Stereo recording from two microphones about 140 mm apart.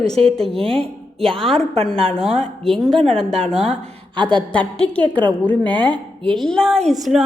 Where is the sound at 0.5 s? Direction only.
40° right (ahead or behind).